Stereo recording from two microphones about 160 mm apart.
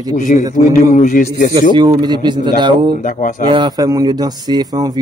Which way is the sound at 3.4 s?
30° right (ahead or behind).